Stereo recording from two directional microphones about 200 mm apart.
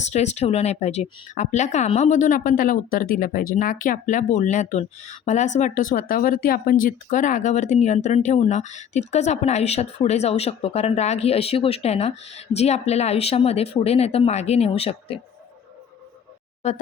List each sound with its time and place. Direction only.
0.0 s speech: 35° left (ahead or behind)